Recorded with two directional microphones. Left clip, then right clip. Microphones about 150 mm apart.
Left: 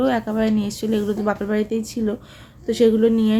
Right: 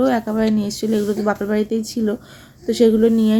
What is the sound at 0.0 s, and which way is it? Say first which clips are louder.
A woman's voice: right 2 dB; 15° right (ahead or behind).